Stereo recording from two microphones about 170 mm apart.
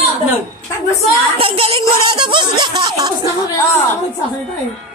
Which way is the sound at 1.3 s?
35° right (ahead or behind).